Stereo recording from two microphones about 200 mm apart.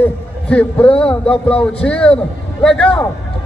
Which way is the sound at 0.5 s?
5° left (ahead or behind).